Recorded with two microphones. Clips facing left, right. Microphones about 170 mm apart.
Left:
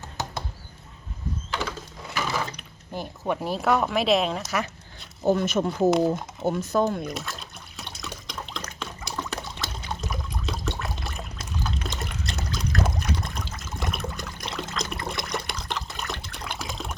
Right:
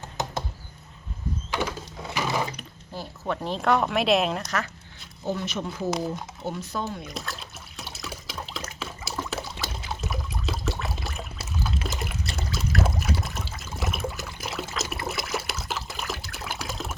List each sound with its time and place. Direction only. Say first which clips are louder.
1.5 s a sound: right 3 dB; 15° right (ahead or behind)
2.1 s wood: right 1 dB; 15° right (ahead or behind)
2.9 s speech: left 3 dB; 15° left (ahead or behind); by 4.5 s centre (ahead or behind)
5.2 s speech: left 7 dB; 50° left (ahead or behind)
7.0 s liquid: left 3 dB; centre (ahead or behind)